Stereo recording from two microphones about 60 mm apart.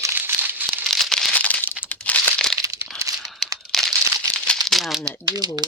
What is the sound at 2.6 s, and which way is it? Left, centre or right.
Crumpling, right.